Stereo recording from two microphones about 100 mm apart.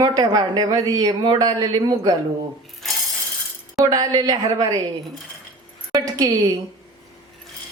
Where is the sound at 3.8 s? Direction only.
40° right (ahead or behind).